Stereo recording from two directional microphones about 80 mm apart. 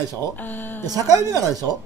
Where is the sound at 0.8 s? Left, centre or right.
Right.